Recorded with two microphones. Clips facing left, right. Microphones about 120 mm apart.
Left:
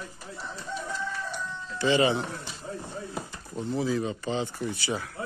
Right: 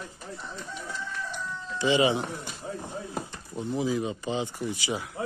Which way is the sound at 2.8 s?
15° right (ahead or behind).